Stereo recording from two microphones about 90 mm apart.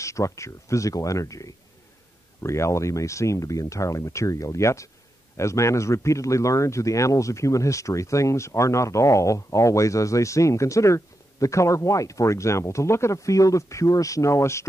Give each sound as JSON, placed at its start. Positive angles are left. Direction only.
{"t": 0.0, "sound": "speech", "side_deg": 35}